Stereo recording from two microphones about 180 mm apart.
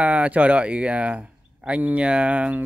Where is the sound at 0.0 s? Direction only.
5° right (ahead or behind).